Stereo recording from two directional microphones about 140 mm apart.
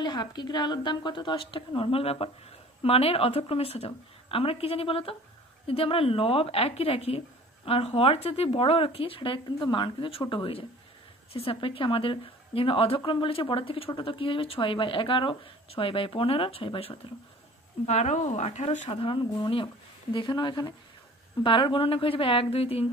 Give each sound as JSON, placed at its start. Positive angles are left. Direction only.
{"t": 0.0, "sound": "speech", "side_deg": 30}
{"t": 17.8, "sound": "speech", "side_deg": 55}
{"t": 18.9, "sound": "speech", "side_deg": 35}